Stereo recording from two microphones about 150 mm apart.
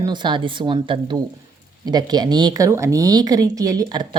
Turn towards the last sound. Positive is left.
turn(degrees=-30)  # may be behind; listen again after turning